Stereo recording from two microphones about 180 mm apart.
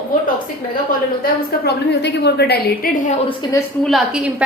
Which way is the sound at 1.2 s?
65° left (ahead or behind).